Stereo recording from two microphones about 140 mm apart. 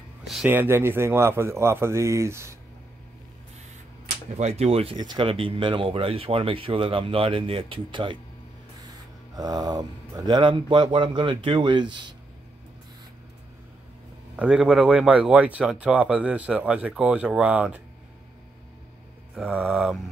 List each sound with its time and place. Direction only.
0.5 s a man's voice: 15° right (ahead or behind)
4.3 s speech: 50° right (ahead or behind)
4.9 s speech: 30° right (ahead or behind)
9.3 s speech: 30° right (ahead or behind)
14.3 s speech: 5° right (ahead or behind)
19.4 s speech: 10° right (ahead or behind)